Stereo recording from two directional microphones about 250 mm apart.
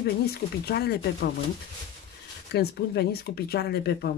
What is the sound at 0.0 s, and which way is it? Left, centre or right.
Speech, left.